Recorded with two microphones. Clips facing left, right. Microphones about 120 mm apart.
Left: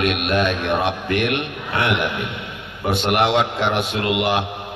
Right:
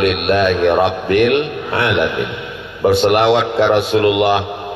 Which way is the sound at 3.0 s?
40° right (ahead or behind).